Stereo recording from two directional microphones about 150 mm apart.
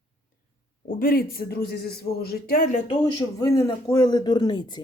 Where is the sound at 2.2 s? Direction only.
75° left (ahead or behind).